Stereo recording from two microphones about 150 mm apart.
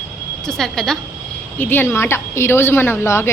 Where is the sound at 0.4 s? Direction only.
5° left (ahead or behind).